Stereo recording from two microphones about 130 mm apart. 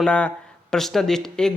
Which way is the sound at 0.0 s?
10° left (ahead or behind).